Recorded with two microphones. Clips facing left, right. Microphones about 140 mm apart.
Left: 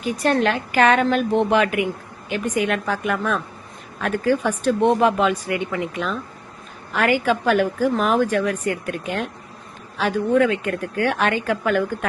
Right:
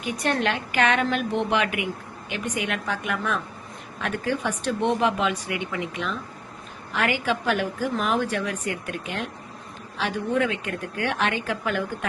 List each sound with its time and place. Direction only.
0.0 s a woman's voice: 40° left (ahead or behind)
10.0 s a woman's voice: 50° left (ahead or behind)